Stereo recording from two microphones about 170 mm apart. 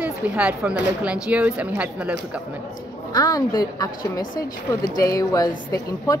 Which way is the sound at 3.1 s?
20° left (ahead or behind).